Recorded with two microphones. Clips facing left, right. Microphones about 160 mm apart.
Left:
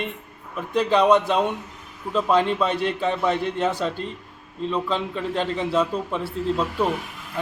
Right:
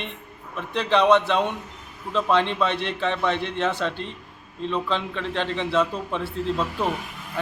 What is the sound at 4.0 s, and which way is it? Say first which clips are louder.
Speech: left 3 dB; 40° left (ahead or behind).